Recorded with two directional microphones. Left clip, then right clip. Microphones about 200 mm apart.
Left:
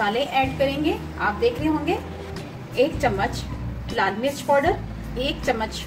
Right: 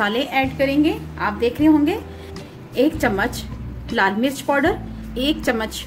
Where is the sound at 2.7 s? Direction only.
55° right (ahead or behind).